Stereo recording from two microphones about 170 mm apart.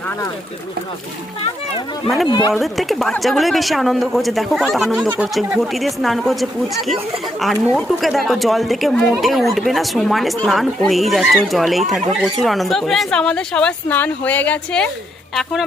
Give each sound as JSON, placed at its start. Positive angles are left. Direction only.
{"t": 2.2, "sound": "speech", "side_deg": 25}
{"t": 2.5, "sound": "speech", "side_deg": 0}